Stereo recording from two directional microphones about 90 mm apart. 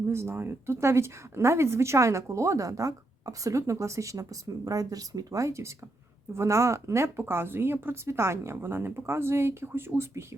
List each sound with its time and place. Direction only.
0.1 s speech: 30° right (ahead or behind)